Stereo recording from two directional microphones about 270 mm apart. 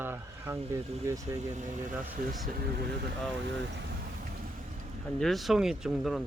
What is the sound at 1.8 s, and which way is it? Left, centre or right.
Speech, centre.